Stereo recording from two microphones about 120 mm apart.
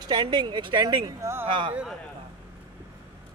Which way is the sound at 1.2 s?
20° right (ahead or behind).